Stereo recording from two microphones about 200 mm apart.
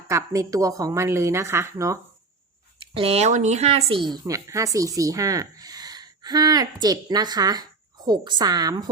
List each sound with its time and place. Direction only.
0.1 s a woman's voice: 15° right (ahead or behind)
2.7 s speech: 25° right (ahead or behind)